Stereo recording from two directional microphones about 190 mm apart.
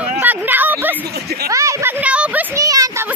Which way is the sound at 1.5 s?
15° right (ahead or behind).